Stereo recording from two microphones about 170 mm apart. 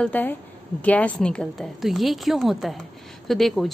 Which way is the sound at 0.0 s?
10° left (ahead or behind).